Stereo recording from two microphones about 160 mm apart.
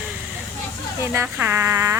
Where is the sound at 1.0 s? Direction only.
15° right (ahead or behind).